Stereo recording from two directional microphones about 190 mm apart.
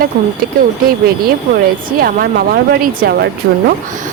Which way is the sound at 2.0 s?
50° right (ahead or behind).